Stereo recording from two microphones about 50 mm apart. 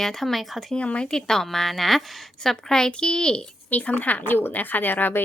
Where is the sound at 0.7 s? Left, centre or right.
Left.